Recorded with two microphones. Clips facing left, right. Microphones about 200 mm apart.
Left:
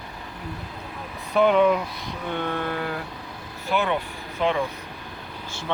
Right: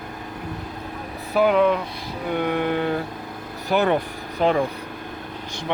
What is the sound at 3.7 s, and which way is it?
Speech, 45° right (ahead or behind).